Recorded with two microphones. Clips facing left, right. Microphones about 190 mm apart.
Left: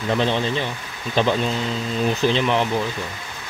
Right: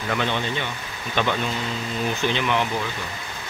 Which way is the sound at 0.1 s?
30° left (ahead or behind).